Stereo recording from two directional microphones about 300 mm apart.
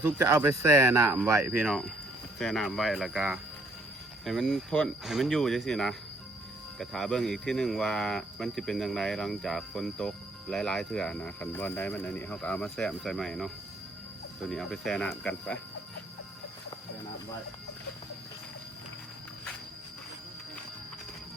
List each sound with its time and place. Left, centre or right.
0.0 s speech: centre
14.5 s speech: centre